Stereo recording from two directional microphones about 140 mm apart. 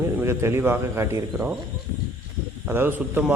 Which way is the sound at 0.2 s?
20° right (ahead or behind).